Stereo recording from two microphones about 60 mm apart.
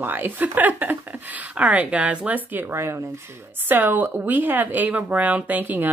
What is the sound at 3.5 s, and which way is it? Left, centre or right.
A woman's voice, right.